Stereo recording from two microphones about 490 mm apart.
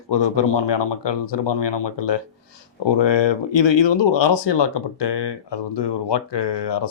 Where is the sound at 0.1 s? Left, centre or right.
Left.